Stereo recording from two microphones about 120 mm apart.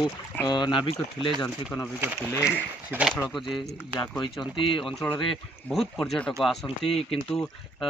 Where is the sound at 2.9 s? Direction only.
15° right (ahead or behind).